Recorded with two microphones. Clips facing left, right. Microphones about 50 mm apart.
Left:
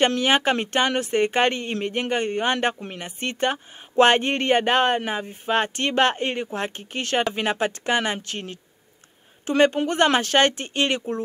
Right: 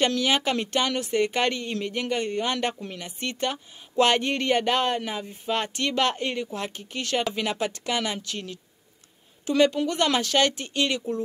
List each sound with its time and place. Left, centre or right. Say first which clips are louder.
0.0 s speech: left 4 dB; left